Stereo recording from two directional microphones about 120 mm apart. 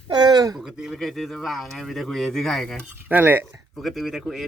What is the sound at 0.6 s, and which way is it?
Speech, 5° right (ahead or behind).